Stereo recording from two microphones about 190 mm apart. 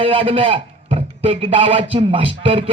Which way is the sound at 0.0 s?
30° right (ahead or behind).